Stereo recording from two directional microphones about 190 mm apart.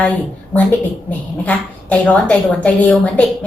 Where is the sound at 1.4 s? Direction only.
5° left (ahead or behind).